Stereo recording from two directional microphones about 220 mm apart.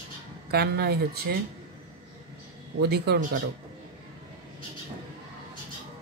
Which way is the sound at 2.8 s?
50° right (ahead or behind).